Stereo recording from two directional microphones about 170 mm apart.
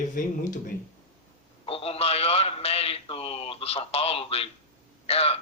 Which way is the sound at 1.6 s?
35° left (ahead or behind).